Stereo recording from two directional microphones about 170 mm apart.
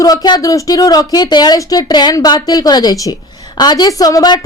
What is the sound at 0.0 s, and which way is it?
Speech, 25° left (ahead or behind).